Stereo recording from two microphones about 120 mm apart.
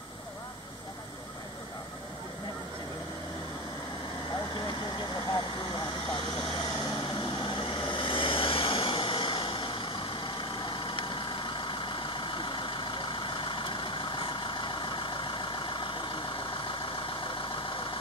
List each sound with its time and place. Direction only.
4.6 s vehicle: 35° left (ahead or behind)
7.2 s vehicle: 40° left (ahead or behind)